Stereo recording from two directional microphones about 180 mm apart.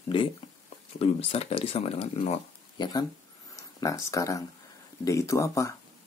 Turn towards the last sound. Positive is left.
turn(degrees=15)  # may be behind; listen again after turning